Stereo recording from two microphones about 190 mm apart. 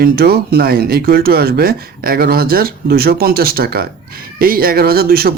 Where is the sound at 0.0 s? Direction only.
55° right (ahead or behind).